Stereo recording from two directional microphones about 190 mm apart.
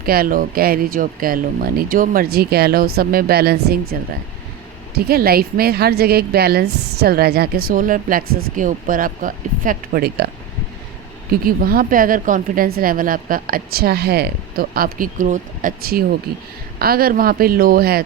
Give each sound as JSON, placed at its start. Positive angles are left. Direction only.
{"t": 0.0, "sound": "a woman's voice", "side_deg": -50}
{"t": 4.9, "sound": "a woman's voice", "side_deg": -55}
{"t": 11.3, "sound": "a woman's voice", "side_deg": -50}